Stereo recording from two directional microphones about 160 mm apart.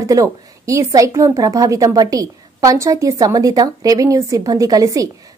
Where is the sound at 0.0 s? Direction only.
20° right (ahead or behind).